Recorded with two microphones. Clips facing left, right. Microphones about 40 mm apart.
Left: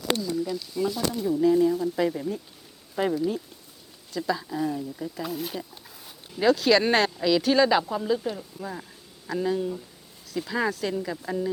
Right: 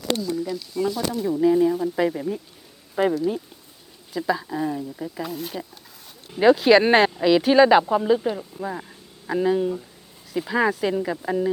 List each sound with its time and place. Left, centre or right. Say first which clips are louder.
0.1 s speech: right 2 dB; centre
1.3 s speech: right 2 dB; centre
5.2 s speech: even; centre
6.3 s speech: right 5 dB; right